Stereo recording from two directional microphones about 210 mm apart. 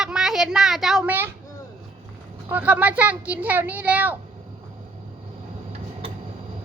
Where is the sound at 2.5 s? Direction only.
5° right (ahead or behind).